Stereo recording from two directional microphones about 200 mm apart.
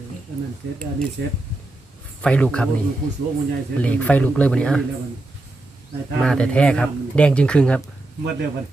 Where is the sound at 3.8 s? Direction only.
5° left (ahead or behind).